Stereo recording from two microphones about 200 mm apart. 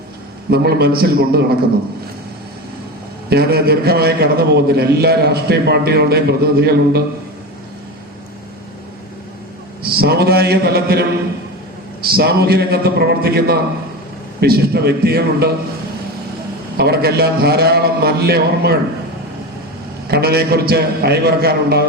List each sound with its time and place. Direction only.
0.5 s a man's voice: 55° right (ahead or behind)
3.2 s a man's voice: 50° right (ahead or behind)
9.8 s a man's voice: 50° right (ahead or behind)
12.1 s a man's voice: 50° right (ahead or behind)
16.7 s a man's voice: 50° right (ahead or behind)
20.1 s a man's voice: 50° right (ahead or behind)